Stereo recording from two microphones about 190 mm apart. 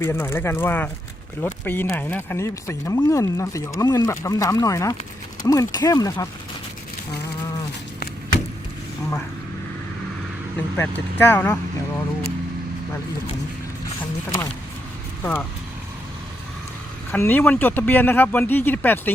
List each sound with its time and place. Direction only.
0.0 s speech: 15° left (ahead or behind)
10.8 s speech: 10° left (ahead or behind)
15.2 s speech: 10° left (ahead or behind)
17.1 s speech: 10° left (ahead or behind)